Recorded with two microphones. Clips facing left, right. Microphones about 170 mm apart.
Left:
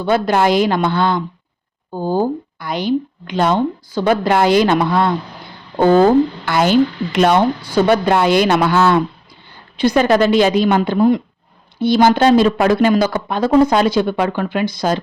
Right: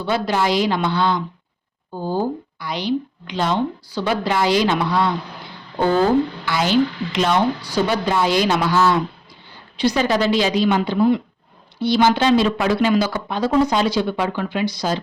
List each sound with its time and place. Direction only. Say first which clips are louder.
0.0 s speech: left 5 dB; 50° left (ahead or behind)